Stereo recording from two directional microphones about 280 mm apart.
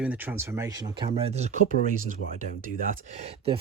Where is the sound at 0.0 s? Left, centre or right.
Centre.